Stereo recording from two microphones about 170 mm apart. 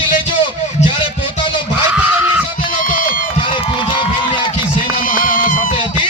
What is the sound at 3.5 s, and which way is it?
Run, 30° left (ahead or behind).